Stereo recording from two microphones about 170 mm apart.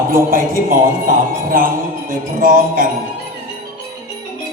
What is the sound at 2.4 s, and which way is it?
Speech, 55° right (ahead or behind).